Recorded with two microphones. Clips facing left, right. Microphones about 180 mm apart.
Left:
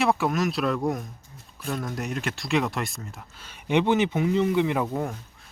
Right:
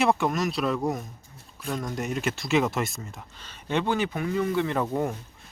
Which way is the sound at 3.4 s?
15° left (ahead or behind).